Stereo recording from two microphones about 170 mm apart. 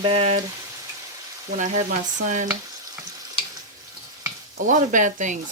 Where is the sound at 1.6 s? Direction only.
45° right (ahead or behind).